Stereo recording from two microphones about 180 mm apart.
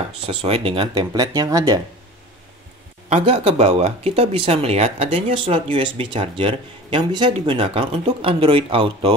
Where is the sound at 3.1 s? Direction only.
35° right (ahead or behind).